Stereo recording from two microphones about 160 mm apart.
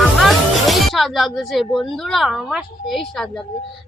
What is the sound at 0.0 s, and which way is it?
Speech, centre (ahead or behind).